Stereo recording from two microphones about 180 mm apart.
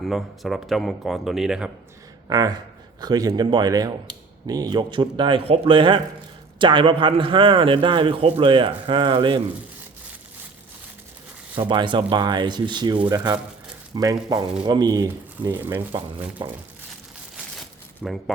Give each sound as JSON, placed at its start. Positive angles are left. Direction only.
{"t": 0.0, "sound": "speech", "side_deg": 0}
{"t": 2.2, "sound": "a man's voice", "side_deg": -20}
{"t": 11.7, "sound": "a man's voice", "side_deg": -25}
{"t": 17.3, "sound": "crumpling", "side_deg": 0}